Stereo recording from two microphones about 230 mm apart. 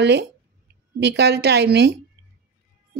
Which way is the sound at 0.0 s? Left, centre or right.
Right.